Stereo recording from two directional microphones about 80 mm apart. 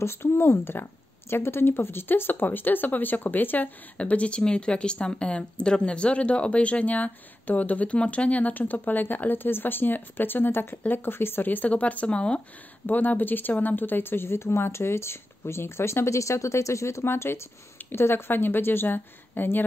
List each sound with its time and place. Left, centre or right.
0.0 s speech: left